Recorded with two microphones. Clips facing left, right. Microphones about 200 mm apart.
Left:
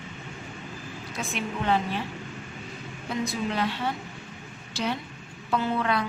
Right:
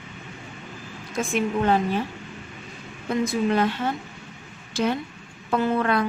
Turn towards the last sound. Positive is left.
turn(degrees=-50)  # may be behind; listen again after turning